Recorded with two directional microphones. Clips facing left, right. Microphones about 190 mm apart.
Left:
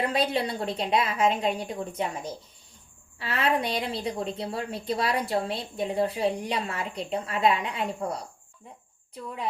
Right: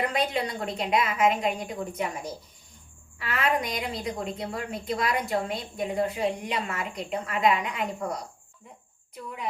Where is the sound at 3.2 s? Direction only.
30° left (ahead or behind).